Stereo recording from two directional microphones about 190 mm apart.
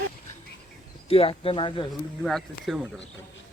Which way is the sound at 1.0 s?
30° left (ahead or behind).